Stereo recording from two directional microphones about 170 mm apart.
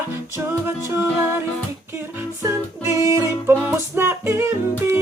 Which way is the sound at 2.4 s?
15° right (ahead or behind).